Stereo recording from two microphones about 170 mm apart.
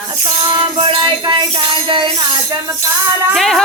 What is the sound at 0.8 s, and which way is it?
Jingle bell, 30° right (ahead or behind).